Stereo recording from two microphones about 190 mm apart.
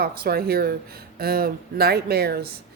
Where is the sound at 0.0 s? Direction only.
55° right (ahead or behind).